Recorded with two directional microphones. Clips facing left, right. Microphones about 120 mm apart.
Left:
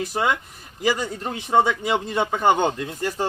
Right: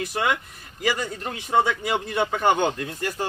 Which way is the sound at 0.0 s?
25° left (ahead or behind).